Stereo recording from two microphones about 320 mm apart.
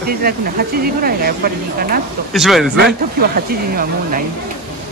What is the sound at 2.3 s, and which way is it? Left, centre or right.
Speech, centre.